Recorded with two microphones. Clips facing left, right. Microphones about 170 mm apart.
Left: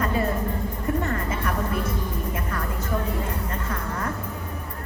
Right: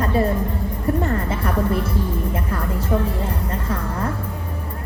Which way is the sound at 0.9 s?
35° right (ahead or behind).